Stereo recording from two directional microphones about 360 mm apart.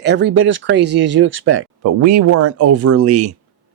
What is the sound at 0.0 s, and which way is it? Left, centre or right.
Speech, right.